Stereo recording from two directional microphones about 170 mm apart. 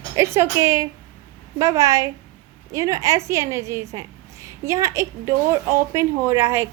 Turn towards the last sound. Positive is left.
turn(degrees=-15)  # may be behind; listen again after turning